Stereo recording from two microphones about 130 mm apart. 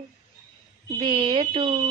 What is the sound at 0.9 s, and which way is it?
Speech, 40° right (ahead or behind).